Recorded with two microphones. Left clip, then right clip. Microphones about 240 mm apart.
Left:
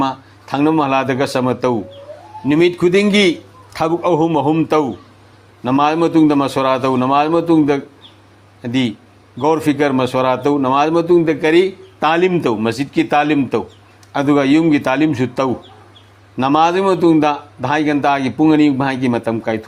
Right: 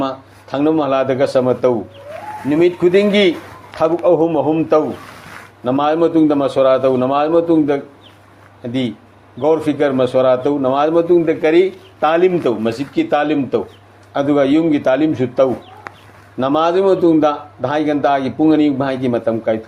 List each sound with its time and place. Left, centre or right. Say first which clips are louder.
0.0 s a man's voice: left 2 dB; left